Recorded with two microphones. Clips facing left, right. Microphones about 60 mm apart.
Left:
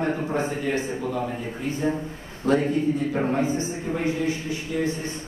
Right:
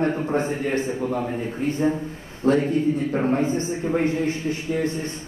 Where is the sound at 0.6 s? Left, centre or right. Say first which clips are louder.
Right 2 dB; right.